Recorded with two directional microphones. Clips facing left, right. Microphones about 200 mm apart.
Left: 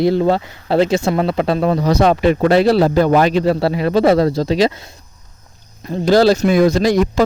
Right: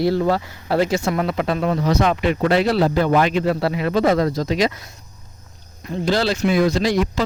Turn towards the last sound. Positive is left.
turn(degrees=45)  # may be behind; listen again after turning